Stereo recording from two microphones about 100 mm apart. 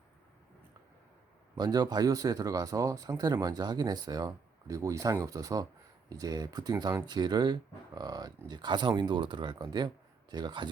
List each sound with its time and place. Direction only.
1.5 s speech: 40° right (ahead or behind)